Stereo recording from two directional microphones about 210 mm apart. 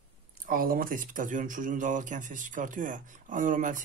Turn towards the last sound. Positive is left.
turn(degrees=-40)  # may be behind; listen again after turning